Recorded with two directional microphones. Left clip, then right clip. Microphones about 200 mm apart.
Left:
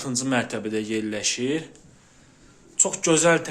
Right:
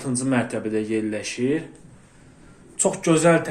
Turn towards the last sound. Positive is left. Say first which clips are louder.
# right 1 dB
turn(degrees=10)  # may be behind; listen again after turning